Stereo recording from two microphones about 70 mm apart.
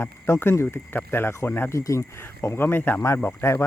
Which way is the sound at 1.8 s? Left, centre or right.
Left.